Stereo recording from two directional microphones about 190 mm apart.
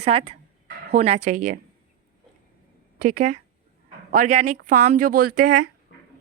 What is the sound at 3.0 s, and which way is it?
A woman's voice, 40° right (ahead or behind).